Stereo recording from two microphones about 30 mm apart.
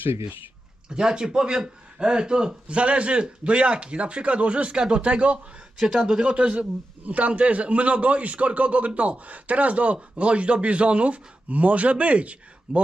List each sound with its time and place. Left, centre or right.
0.9 s a man's voice: right
2.6 s speech: right
4.7 s a man's voice: right
5.0 s speech: right
7.0 s speech: right